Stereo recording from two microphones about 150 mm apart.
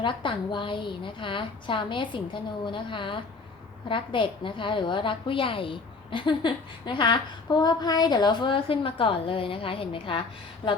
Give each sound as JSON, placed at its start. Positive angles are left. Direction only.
{"t": 0.0, "sound": "a woman's voice", "side_deg": 35}